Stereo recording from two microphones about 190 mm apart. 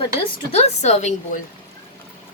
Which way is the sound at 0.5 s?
35° left (ahead or behind).